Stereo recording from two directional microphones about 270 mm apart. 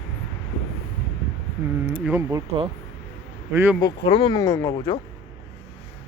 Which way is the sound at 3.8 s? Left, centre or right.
Centre.